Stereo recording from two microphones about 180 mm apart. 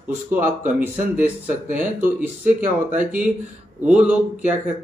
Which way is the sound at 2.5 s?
50° right (ahead or behind).